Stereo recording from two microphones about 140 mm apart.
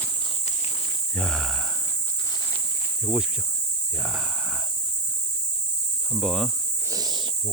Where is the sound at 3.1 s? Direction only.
10° right (ahead or behind).